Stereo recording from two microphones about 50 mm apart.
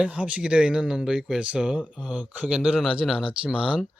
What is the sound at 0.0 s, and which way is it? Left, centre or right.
Speech, right.